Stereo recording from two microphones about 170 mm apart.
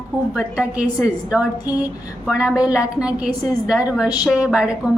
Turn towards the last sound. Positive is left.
turn(degrees=-5)  # may be behind; listen again after turning